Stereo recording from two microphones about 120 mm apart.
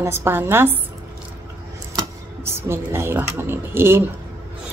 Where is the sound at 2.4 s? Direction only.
20° right (ahead or behind).